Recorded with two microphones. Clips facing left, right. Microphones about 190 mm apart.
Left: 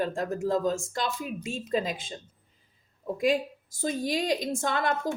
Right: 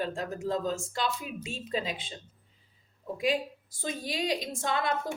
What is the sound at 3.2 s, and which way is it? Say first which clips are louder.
Speech: left 3 dB; 45° left (ahead or behind).